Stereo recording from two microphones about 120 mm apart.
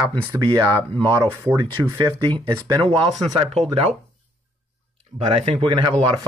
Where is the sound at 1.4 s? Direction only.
20° right (ahead or behind).